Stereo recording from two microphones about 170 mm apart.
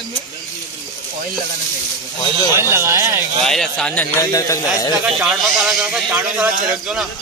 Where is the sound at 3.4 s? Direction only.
Centre (ahead or behind).